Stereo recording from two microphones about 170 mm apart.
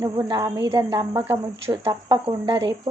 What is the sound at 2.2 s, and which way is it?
Speech, 30° right (ahead or behind).